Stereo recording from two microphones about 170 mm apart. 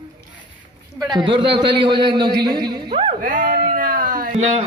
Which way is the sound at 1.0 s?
25° right (ahead or behind).